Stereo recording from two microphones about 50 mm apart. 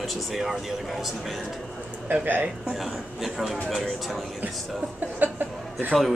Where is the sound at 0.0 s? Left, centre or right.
Centre.